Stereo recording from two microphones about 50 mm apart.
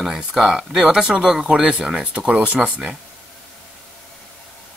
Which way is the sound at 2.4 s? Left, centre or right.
Right.